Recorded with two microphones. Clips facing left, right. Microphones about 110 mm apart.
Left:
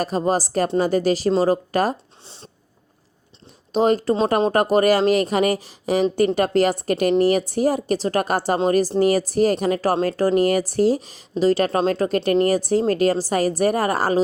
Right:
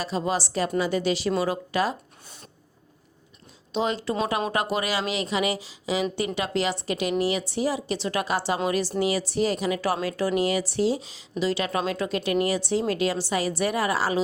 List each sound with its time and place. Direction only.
0.0 s speech: 45° left (ahead or behind)
2.2 s speech: 30° left (ahead or behind)
3.7 s speech: 45° left (ahead or behind)